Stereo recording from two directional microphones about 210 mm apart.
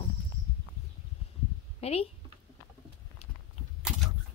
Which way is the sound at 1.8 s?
30° left (ahead or behind).